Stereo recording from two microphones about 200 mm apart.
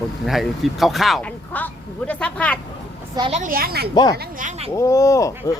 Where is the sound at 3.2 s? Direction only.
30° right (ahead or behind).